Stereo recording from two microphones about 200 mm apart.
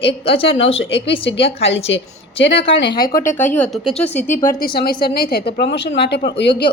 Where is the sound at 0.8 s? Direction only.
60° left (ahead or behind).